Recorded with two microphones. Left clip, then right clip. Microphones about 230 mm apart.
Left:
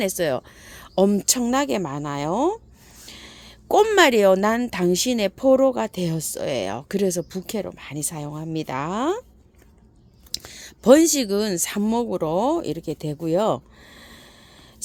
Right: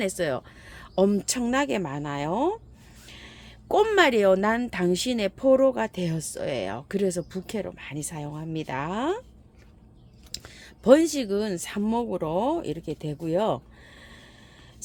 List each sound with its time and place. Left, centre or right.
0.0 s speech: left
10.3 s speech: left